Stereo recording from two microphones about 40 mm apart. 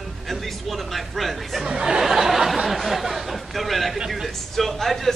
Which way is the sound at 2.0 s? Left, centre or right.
Centre.